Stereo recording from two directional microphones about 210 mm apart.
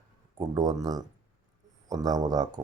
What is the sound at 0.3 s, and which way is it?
Speech, 20° right (ahead or behind).